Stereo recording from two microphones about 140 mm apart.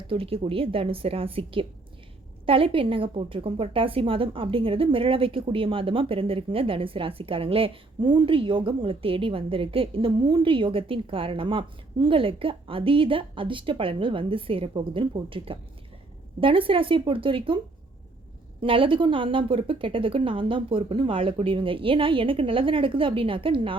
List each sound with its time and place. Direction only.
0.1 s a woman's voice: 40° right (ahead or behind)
18.6 s a woman's voice: 40° right (ahead or behind)